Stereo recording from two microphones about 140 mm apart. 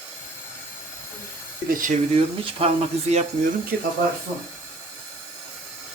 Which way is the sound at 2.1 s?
45° right (ahead or behind).